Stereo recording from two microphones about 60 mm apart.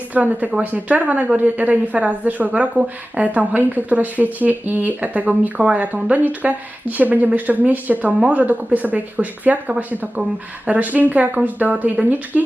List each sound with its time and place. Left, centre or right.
0.1 s speech: right